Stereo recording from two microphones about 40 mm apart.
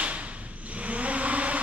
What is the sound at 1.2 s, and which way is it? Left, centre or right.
Vehicle, right.